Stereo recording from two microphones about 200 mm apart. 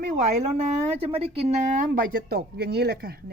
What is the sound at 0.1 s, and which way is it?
A woman's voice, 30° right (ahead or behind).